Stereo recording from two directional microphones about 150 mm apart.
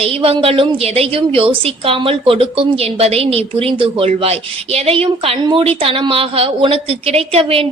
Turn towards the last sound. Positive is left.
turn(degrees=-40)  # may be behind; listen again after turning